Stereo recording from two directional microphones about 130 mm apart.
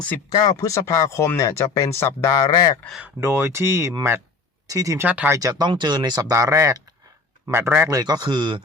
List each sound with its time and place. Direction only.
0.3 s speech: 35° left (ahead or behind)
0.6 s speech: 25° left (ahead or behind)
3.0 s speech: 20° right (ahead or behind)
5.0 s speech: 10° right (ahead or behind)
5.4 s speech: 30° right (ahead or behind)
7.9 s speech: 30° right (ahead or behind)